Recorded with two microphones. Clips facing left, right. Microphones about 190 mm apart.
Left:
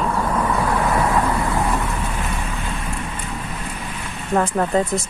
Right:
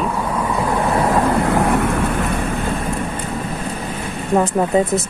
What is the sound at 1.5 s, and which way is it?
Vehicle, 60° right (ahead or behind).